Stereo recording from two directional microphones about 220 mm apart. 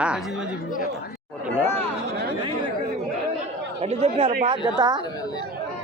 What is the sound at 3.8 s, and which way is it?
Speech, 30° right (ahead or behind).